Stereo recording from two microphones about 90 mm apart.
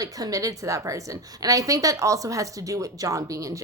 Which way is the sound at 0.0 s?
40° right (ahead or behind).